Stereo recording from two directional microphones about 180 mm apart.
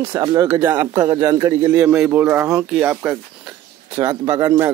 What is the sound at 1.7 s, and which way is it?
Speech, 5° right (ahead or behind).